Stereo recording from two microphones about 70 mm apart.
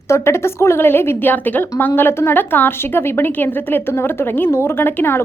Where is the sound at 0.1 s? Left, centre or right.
Left.